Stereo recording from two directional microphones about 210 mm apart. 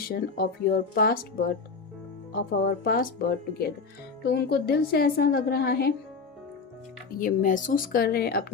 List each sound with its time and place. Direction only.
0.0 s a woman's voice: 45° left (ahead or behind)
7.2 s a woman's voice: 40° left (ahead or behind)